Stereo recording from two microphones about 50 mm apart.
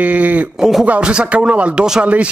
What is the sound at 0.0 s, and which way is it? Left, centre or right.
Speech, right.